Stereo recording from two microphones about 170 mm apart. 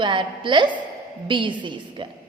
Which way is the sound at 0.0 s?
30° right (ahead or behind).